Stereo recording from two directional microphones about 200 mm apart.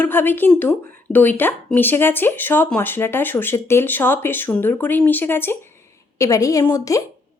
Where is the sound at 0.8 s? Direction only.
45° right (ahead or behind).